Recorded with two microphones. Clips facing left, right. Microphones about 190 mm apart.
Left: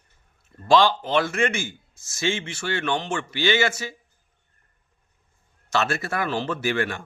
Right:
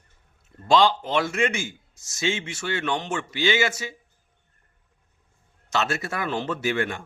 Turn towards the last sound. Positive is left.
turn(degrees=-20)  # may be behind; listen again after turning